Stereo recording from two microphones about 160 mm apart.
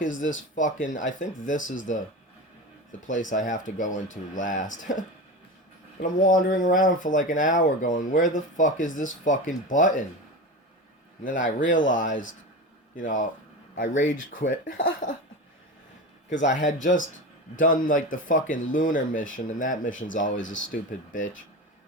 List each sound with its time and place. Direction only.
0.5 s speech: 55° left (ahead or behind)
3.2 s speech: 55° left (ahead or behind)
11.2 s speech: 55° left (ahead or behind)
13.7 s speech: 55° left (ahead or behind)
16.4 s speech: 50° left (ahead or behind)